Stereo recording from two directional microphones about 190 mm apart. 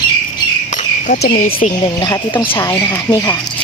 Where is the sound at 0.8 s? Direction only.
40° left (ahead or behind).